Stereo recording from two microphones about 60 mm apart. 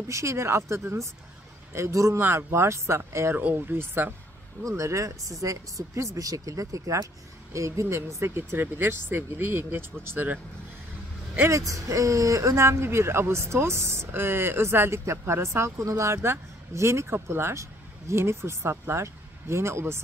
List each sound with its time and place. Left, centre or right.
0.1 s a man's voice: right
2.1 s speech: right
3.3 s speech: right
4.7 s speech: right
7.5 s speech: right
11.4 s speech: right